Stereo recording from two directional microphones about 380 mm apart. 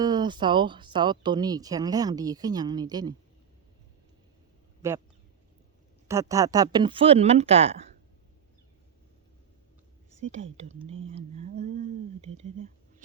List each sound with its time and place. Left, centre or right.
0.0 s speech: centre
4.8 s speech: centre
6.1 s speech: centre
10.3 s speech: centre